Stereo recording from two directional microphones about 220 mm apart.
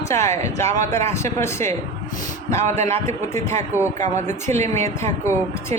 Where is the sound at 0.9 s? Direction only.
10° left (ahead or behind).